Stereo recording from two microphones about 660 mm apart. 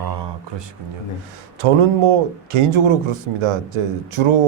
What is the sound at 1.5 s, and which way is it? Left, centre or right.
Speech, right.